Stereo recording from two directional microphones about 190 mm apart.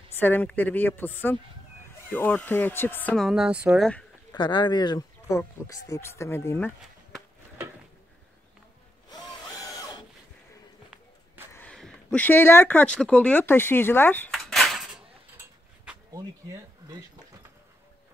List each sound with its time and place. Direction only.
0.1 s speech: 10° left (ahead or behind)
3.3 s speech: 5° right (ahead or behind)
4.3 s speech: 25° left (ahead or behind); by 7.2 s 5° left (ahead or behind)
9.5 s a sound: 20° left (ahead or behind)
11.5 s speech: 5° left (ahead or behind)
16.1 s speech: 20° right (ahead or behind)